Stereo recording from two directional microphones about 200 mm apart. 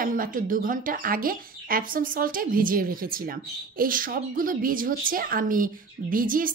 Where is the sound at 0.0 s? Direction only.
45° right (ahead or behind).